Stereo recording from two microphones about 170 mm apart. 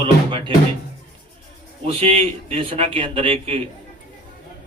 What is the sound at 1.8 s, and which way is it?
Music, 35° right (ahead or behind).